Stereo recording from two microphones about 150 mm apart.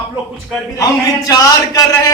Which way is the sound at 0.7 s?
25° left (ahead or behind).